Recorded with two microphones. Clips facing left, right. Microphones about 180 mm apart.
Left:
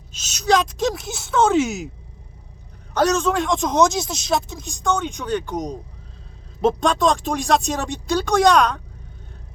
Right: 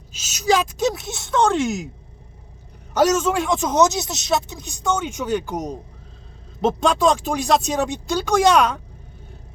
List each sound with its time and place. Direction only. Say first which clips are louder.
0.1 s speech: left 1 dB; 5° right (ahead or behind)
2.9 s speech: right 1 dB; 10° right (ahead or behind)